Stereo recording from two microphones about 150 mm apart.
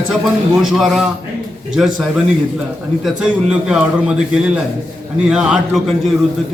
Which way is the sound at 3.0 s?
5° right (ahead or behind).